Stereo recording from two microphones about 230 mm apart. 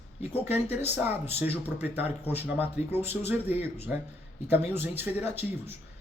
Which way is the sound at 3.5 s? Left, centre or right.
Left.